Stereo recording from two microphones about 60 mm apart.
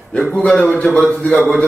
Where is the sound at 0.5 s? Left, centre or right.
Centre.